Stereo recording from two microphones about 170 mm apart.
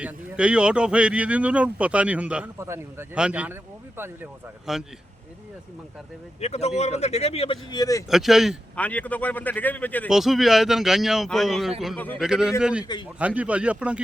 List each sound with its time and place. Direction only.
0.0 s speech: 5° right (ahead or behind)
4.7 s a man's voice: 5° right (ahead or behind)
6.4 s speech: 40° left (ahead or behind); by 8.0 s 20° left (ahead or behind)
8.1 s a man's voice: centre (ahead or behind)
10.1 s a man's voice: centre (ahead or behind)
12.2 s a man's voice: 5° right (ahead or behind)
12.8 s a man's voice: 25° left (ahead or behind)
13.1 s speech: 10° right (ahead or behind)